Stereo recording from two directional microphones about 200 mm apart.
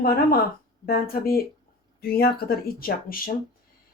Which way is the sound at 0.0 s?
50° left (ahead or behind).